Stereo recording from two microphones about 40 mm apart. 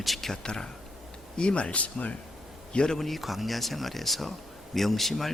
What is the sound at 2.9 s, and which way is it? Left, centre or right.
Speech, centre.